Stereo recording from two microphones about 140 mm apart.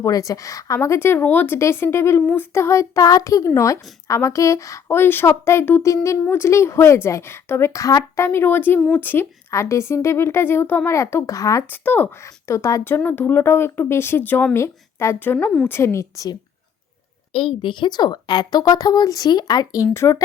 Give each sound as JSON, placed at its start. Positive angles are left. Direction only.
{"t": 0.0, "sound": "a child's voice", "side_deg": 25}
{"t": 17.3, "sound": "a child's voice", "side_deg": 40}